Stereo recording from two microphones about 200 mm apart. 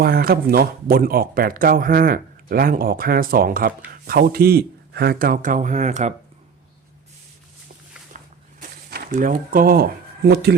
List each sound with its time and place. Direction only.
0.0 s speech: 50° right (ahead or behind)
8.1 s vehicle: 40° right (ahead or behind)
8.9 s speech: 45° right (ahead or behind)